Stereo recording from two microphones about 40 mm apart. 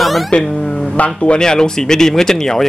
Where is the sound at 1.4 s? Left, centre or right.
Centre.